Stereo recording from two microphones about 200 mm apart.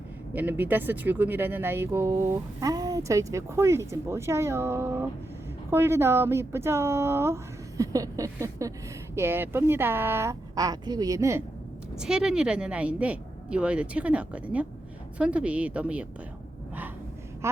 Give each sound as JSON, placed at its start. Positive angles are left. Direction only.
{"t": 0.3, "sound": "speech", "side_deg": -10}
{"t": 11.9, "sound": "speech", "side_deg": -5}
{"t": 17.4, "sound": "speech", "side_deg": -15}